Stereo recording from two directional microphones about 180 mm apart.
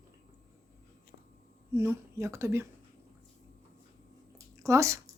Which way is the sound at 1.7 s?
15° right (ahead or behind).